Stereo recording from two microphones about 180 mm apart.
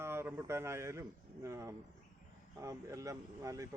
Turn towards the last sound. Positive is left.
turn(degrees=-20)  # may be behind; listen again after turning